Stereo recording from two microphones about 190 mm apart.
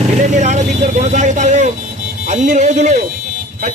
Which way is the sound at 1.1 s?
40° right (ahead or behind).